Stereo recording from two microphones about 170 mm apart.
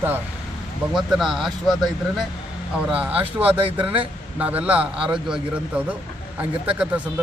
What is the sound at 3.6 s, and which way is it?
Speech, 30° right (ahead or behind).